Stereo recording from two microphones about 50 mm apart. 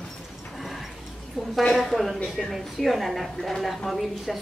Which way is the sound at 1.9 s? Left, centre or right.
Centre.